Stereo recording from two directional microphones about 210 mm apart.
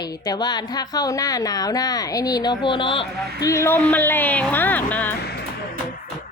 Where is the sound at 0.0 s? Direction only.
20° left (ahead or behind).